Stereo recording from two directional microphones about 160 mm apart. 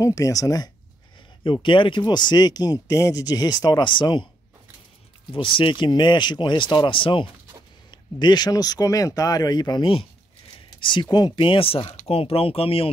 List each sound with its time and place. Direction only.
0.0 s speech: 20° left (ahead or behind)
5.3 s speech: 35° left (ahead or behind)